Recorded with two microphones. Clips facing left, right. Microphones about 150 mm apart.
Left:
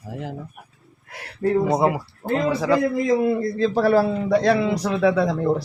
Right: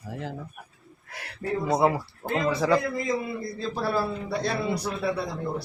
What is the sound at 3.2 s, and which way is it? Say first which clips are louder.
A man's voice: left 12 dB; 65° left (ahead or behind).